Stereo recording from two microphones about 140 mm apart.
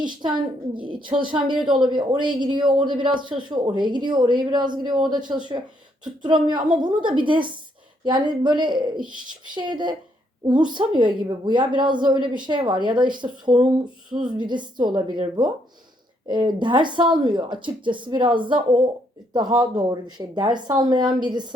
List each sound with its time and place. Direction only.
0.0 s a woman's voice: 35° right (ahead or behind)
14.3 s a woman's voice: 35° right (ahead or behind)